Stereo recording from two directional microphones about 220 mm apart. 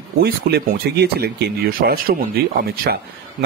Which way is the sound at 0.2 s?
45° right (ahead or behind).